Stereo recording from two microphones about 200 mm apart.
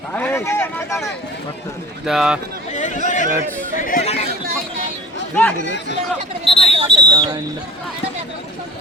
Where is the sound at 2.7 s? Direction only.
35° left (ahead or behind).